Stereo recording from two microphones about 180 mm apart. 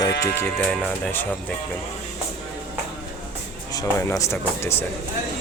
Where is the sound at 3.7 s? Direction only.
15° left (ahead or behind).